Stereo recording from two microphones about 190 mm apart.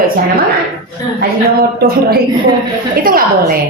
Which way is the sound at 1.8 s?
55° right (ahead or behind).